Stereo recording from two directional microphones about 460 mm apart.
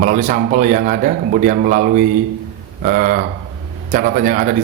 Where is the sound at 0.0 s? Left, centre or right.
Centre.